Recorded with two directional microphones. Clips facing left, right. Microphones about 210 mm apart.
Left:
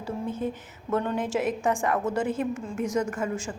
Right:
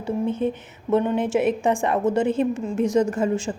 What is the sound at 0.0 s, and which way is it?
Speech, 25° right (ahead or behind).